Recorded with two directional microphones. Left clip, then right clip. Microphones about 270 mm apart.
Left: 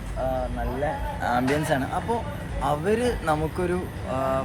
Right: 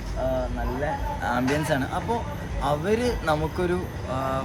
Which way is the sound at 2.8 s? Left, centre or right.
Centre.